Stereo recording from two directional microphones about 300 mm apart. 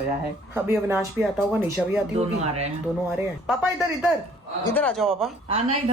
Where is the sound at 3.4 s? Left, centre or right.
Centre.